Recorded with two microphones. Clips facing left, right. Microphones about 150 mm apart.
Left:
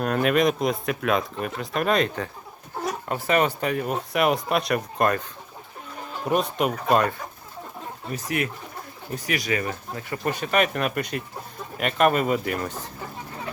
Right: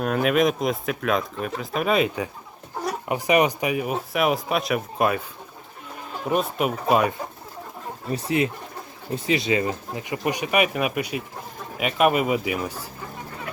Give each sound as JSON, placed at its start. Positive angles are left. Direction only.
{"t": 0.0, "sound": "speech", "side_deg": 0}
{"t": 6.2, "sound": "speech", "side_deg": 0}
{"t": 8.1, "sound": "speech", "side_deg": -30}